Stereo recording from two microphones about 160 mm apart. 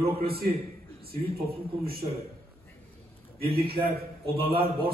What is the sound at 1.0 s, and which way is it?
A man's voice, 70° right (ahead or behind).